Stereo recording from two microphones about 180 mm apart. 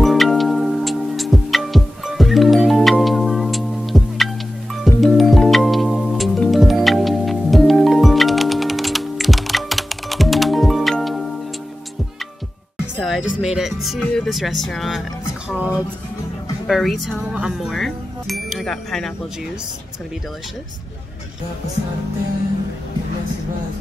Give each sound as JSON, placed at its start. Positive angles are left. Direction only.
{"t": 0.0, "sound": "music", "side_deg": 0}
{"t": 13.0, "sound": "music", "side_deg": -5}
{"t": 15.5, "sound": "speech", "side_deg": -5}